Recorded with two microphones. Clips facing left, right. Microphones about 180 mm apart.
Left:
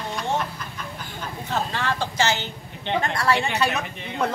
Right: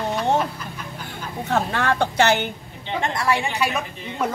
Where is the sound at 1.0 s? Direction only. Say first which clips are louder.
Right 6 dB; 65° right (ahead or behind).